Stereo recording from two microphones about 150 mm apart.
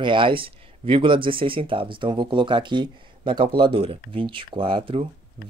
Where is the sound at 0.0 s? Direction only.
35° right (ahead or behind).